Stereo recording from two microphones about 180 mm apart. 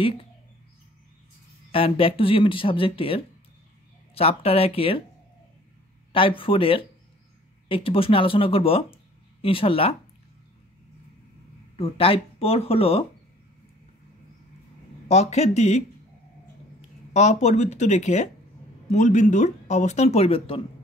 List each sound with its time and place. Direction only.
1.7 s speech: 30° left (ahead or behind)
6.1 s speech: 30° left (ahead or behind)
11.7 s speech: 30° left (ahead or behind)
15.0 s speech: 40° left (ahead or behind)
17.1 s speech: 40° left (ahead or behind)